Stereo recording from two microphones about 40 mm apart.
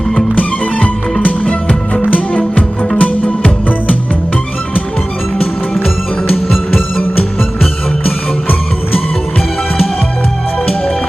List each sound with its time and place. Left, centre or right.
0.3 s music: left
5.8 s music: left